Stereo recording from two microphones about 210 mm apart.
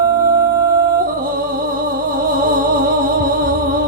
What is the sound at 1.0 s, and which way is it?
Music, 40° right (ahead or behind).